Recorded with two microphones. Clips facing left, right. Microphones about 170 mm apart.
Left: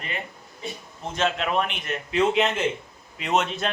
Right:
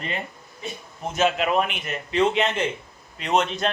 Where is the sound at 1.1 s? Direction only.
5° right (ahead or behind).